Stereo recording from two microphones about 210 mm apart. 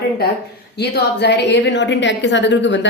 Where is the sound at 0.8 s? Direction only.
55° left (ahead or behind).